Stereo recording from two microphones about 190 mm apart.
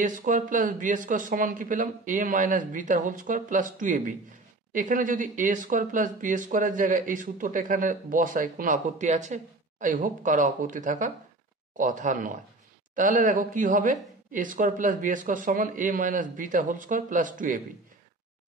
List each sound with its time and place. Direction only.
0.0 s speech: 45° right (ahead or behind)